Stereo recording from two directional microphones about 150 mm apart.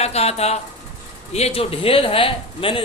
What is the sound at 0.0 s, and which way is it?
A man's voice, 45° left (ahead or behind).